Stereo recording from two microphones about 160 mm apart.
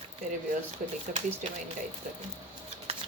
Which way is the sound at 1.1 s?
50° right (ahead or behind).